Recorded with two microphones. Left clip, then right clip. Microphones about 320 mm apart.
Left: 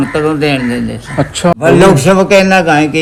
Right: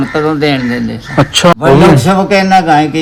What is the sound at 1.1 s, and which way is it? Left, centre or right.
Speech, right.